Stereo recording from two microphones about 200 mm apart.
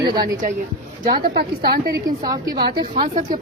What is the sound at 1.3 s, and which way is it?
Speech, 50° right (ahead or behind).